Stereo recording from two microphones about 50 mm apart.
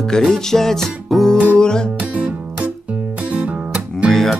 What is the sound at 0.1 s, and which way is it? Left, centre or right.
Music, centre.